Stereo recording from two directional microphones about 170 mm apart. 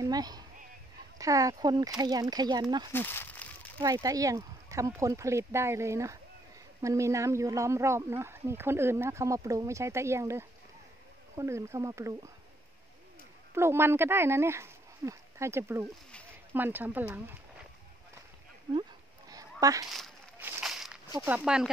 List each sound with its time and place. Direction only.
0.0 s speech: 25° right (ahead or behind)
2.9 s a sound: 10° left (ahead or behind)
3.8 s speech: 20° right (ahead or behind)
13.6 s speech: 15° right (ahead or behind)
15.8 s speech: 5° left (ahead or behind)
16.5 s speech: 10° right (ahead or behind)
18.8 s a sound: 20° right (ahead or behind)
20.3 s a sound: 5° right (ahead or behind)
21.3 s speech: 5° right (ahead or behind)